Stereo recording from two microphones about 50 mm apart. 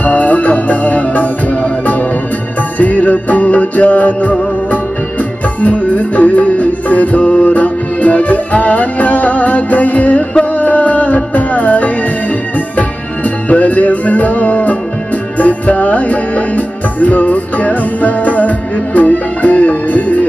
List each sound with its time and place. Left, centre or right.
0.0 s music: left
13.5 s music: left